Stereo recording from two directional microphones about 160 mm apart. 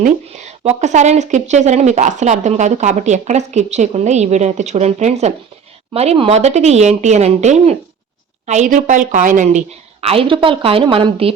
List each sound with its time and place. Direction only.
0.0 s a woman's voice: 45° right (ahead or behind)